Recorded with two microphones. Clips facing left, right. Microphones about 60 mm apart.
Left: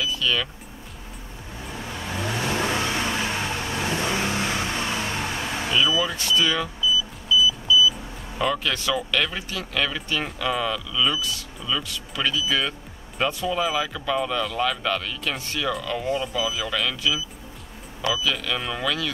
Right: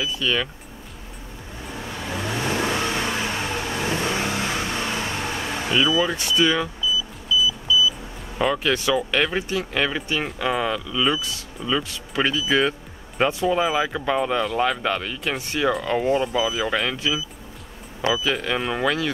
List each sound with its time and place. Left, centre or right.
0.0 s speech: right
2.0 s vehicle: centre
3.3 s vehicle: centre
4.0 s vehicle: centre
5.5 s vehicle: centre
6.1 s speech: right
8.4 s speech: centre